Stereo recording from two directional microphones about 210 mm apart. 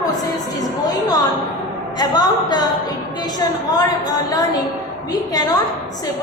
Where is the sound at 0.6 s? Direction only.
20° left (ahead or behind).